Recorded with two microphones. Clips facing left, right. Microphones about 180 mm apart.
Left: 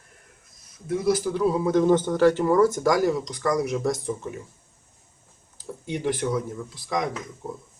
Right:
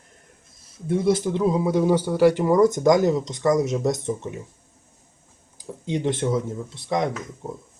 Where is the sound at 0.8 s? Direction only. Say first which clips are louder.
Right 2 dB; 25° right (ahead or behind).